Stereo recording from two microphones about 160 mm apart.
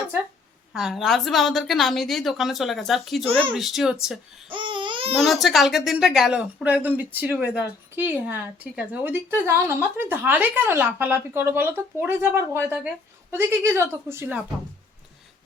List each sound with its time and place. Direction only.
0.7 s a woman's voice: centre (ahead or behind)
4.5 s babbling: 30° right (ahead or behind)
5.2 s a woman's voice: centre (ahead or behind)